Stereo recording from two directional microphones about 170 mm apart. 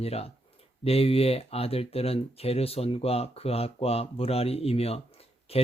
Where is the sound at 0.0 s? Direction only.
35° left (ahead or behind).